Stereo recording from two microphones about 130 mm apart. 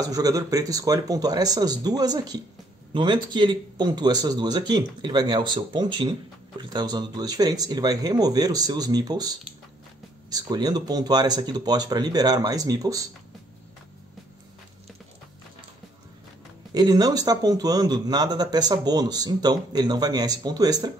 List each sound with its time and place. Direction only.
0.0 s a man's voice: 25° right (ahead or behind)
16.7 s a man's voice: 30° right (ahead or behind)